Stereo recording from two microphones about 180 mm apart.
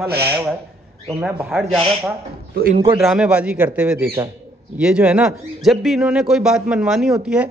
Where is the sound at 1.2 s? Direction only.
5° right (ahead or behind).